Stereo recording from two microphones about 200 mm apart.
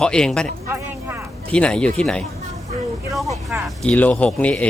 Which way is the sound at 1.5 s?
5° left (ahead or behind).